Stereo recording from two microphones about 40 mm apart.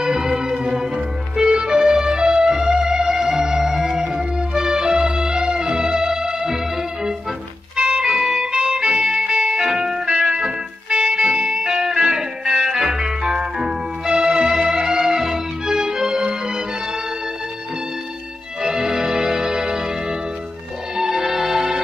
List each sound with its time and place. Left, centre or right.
0.0 s music: centre
7.7 s music: right
18.6 s music: centre